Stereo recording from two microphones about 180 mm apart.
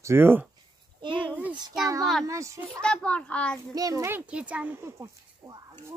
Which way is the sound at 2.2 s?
15° right (ahead or behind).